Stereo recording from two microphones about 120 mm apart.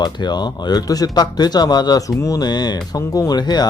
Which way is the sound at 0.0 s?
35° left (ahead or behind).